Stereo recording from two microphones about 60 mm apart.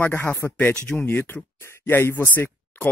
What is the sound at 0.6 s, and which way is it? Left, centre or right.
Speech, centre.